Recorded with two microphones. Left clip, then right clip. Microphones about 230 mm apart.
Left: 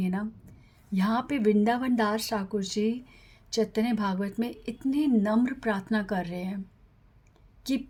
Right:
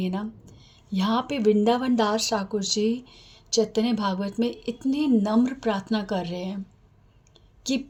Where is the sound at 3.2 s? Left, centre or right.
Left.